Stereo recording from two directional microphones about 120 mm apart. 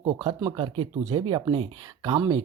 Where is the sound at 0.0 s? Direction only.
40° right (ahead or behind).